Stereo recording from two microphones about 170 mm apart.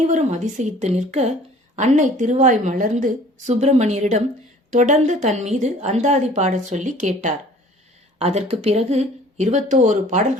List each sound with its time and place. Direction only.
0.1 s a woman's voice: 45° right (ahead or behind)